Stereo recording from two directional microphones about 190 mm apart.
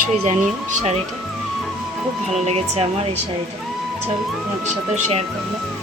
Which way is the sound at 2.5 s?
35° right (ahead or behind).